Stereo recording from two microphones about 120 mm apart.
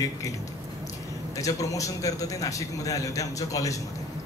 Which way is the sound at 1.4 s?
30° left (ahead or behind).